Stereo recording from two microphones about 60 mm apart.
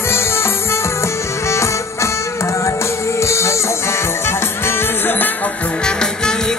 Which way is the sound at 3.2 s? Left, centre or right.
Left.